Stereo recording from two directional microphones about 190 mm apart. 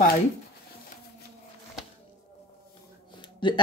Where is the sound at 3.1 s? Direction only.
25° left (ahead or behind).